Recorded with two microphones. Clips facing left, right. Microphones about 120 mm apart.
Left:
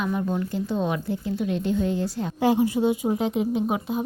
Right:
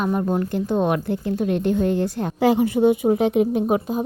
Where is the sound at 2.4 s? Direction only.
70° right (ahead or behind).